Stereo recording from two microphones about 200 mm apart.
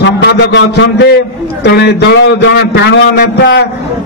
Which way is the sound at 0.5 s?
65° left (ahead or behind).